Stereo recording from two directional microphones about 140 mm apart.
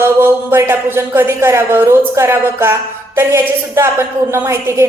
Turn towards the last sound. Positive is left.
turn(degrees=-20)  # may be behind; listen again after turning